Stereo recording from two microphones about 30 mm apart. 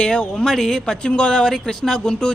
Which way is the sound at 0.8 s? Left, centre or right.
Left.